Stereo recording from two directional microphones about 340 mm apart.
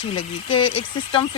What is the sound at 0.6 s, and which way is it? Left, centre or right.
Speech, left.